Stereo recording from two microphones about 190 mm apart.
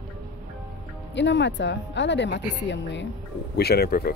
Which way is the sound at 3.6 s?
55° left (ahead or behind).